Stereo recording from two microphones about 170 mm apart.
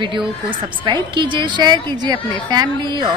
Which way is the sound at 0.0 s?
30° right (ahead or behind).